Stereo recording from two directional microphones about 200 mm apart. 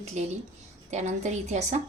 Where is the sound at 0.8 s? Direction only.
35° right (ahead or behind).